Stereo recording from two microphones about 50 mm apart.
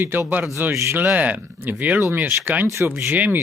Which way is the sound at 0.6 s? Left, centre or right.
Right.